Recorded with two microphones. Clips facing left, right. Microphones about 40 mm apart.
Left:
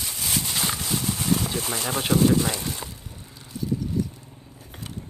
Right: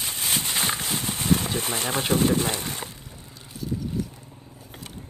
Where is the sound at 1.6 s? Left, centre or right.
Right.